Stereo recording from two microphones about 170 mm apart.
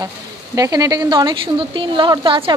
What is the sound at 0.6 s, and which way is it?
A woman's voice, 20° right (ahead or behind).